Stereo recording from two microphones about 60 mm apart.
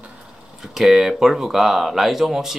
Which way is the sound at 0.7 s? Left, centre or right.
Centre.